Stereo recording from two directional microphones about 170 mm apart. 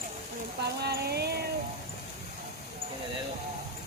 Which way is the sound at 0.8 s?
70° right (ahead or behind).